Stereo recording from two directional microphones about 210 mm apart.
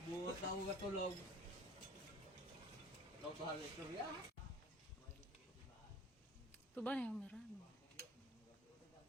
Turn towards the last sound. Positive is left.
turn(degrees=5)  # may be behind; listen again after turning